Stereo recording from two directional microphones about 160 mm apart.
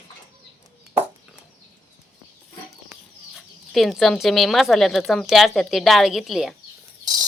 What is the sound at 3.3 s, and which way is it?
Speech, centre (ahead or behind).